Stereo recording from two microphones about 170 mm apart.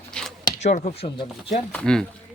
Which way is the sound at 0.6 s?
40° left (ahead or behind).